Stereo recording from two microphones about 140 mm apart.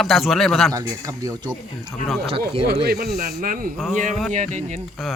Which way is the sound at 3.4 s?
85° right.